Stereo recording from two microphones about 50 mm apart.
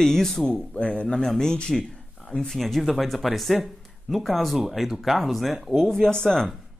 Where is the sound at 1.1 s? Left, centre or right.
Centre.